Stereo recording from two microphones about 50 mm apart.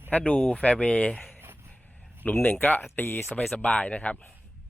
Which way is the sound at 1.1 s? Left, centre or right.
Left.